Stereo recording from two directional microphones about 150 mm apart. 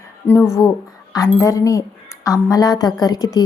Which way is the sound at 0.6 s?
25° left (ahead or behind).